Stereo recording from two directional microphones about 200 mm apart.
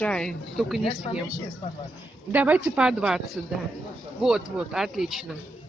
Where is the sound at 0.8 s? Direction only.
30° left (ahead or behind).